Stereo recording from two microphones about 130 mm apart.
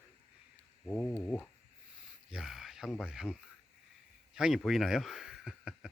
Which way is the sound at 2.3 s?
Centre (ahead or behind).